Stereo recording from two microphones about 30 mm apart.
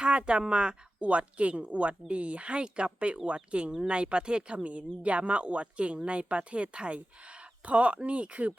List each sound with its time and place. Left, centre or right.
0.0 s speech: right
1.1 s speech: right
4.5 s speech: right